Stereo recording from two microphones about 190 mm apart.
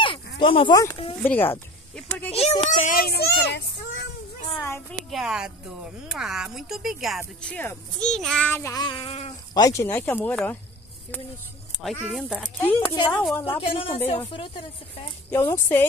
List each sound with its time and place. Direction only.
0.0 s dog: 25° left (ahead or behind)
1.2 s speech: 10° left (ahead or behind)
2.7 s a child's voice: 40° left (ahead or behind); by 4.1 s 60° left (ahead or behind)
4.6 s a sound: 10° left (ahead or behind)
5.1 s speech: 5° right (ahead or behind); by 8.8 s 15° left (ahead or behind)
8.8 s speech: 30° left (ahead or behind)
9.5 s speech: 20° left (ahead or behind)
11.8 s speech: centre (ahead or behind)
12.9 s speech: 20° left (ahead or behind)
15.3 s speech: 15° left (ahead or behind)